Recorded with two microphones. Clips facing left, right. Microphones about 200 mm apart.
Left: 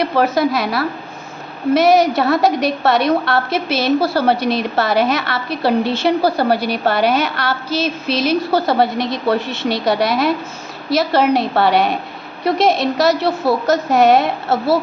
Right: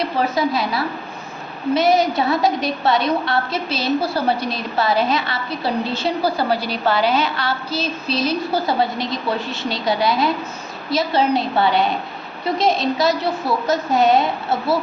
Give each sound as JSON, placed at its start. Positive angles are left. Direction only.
{"t": 0.0, "sound": "a woman's voice", "side_deg": 75}